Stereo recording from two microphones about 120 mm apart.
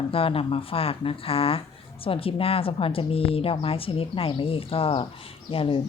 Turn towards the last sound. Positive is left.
turn(degrees=50)  # may be behind; listen again after turning